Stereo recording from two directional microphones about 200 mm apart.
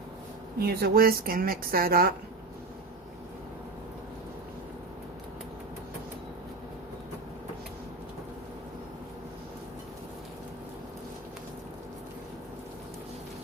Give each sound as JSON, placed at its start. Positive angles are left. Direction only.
{"t": 0.6, "sound": "speech", "side_deg": -50}